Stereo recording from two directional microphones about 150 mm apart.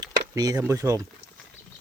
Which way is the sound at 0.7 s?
20° right (ahead or behind).